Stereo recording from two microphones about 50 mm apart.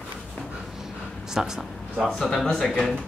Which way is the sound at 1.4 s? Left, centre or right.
Centre.